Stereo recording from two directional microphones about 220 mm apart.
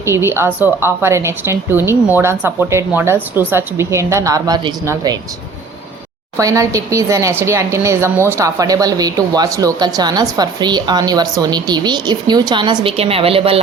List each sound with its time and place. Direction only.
0.0 s speech: 10° right (ahead or behind)
6.3 s speech: 15° right (ahead or behind)